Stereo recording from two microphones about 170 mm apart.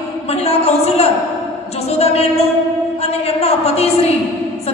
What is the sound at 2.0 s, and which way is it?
A woman's voice, 35° left (ahead or behind).